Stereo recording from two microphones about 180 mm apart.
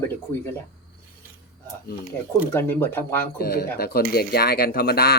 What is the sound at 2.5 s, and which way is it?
Speech, 15° left (ahead or behind).